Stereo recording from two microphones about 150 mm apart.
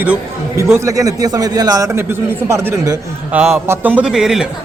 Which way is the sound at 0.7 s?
20° right (ahead or behind).